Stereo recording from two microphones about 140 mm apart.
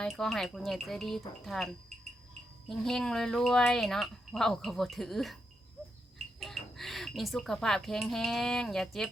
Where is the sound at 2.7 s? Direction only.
5° left (ahead or behind).